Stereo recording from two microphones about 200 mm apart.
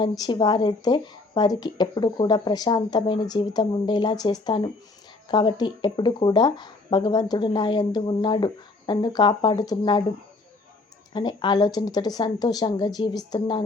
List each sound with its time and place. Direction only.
0.0 s speech: 20° left (ahead or behind)
11.1 s speech: 20° left (ahead or behind)